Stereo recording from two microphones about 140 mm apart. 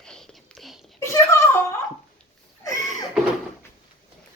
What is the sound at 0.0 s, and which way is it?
Whispering, 5° left (ahead or behind).